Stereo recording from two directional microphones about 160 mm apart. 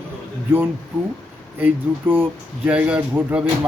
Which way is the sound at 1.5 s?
10° right (ahead or behind).